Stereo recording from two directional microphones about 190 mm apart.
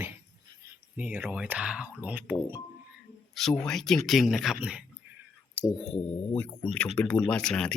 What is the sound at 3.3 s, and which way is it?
Speech, centre (ahead or behind).